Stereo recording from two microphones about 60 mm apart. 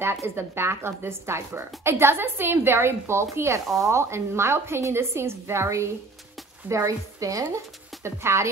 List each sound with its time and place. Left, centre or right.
0.2 s a woman's voice: right
6.7 s a woman's voice: right
8.0 s a woman's voice: right